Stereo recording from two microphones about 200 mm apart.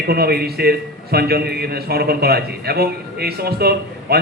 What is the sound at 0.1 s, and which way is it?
A man's voice, 50° right (ahead or behind).